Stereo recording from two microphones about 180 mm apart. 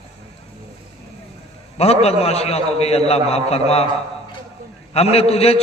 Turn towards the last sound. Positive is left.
turn(degrees=35)  # may be behind; listen again after turning